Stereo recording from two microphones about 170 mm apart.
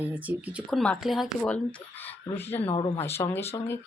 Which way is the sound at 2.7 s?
30° left (ahead or behind).